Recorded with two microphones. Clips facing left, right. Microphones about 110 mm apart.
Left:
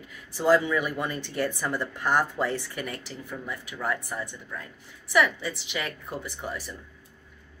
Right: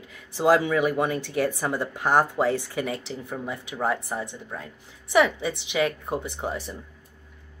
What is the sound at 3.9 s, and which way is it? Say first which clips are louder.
Speech: right 3 dB; 25° right (ahead or behind).